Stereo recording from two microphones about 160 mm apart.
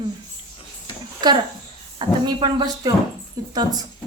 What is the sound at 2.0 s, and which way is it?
A woman's voice, 25° right (ahead or behind).